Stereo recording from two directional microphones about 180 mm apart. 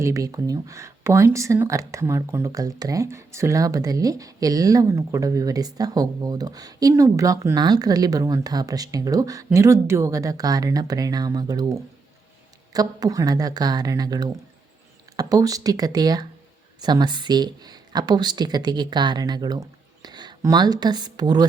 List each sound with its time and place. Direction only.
0.0 s speech: 20° right (ahead or behind)